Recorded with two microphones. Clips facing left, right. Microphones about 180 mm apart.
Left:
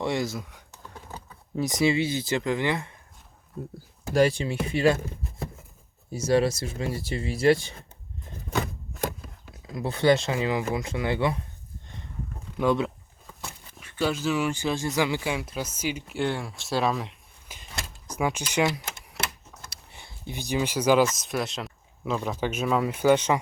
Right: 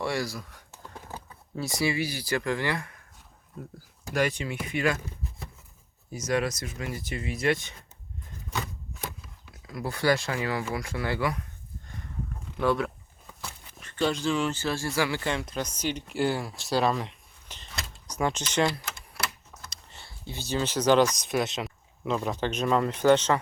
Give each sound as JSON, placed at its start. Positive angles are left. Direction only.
{"t": 0.0, "sound": "speech", "side_deg": 20}
{"t": 0.8, "sound": "computer keyboard", "side_deg": -5}
{"t": 1.5, "sound": "speech", "side_deg": 20}
{"t": 6.1, "sound": "speech", "side_deg": 30}
{"t": 8.4, "sound": "a sound", "side_deg": 55}
{"t": 9.6, "sound": "speech", "side_deg": 25}
{"t": 12.5, "sound": "speech", "side_deg": 20}
{"t": 13.7, "sound": "speech", "side_deg": 10}